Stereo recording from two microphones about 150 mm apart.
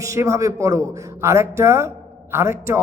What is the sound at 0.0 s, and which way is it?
A man's voice, 20° right (ahead or behind).